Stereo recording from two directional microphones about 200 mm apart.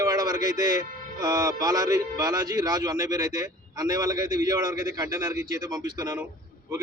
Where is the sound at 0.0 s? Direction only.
20° right (ahead or behind).